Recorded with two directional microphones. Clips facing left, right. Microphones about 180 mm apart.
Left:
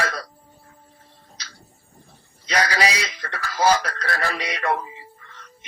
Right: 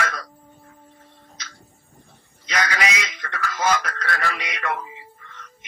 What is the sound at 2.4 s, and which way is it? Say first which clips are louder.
Speech: left 3 dB; 35° left (ahead or behind).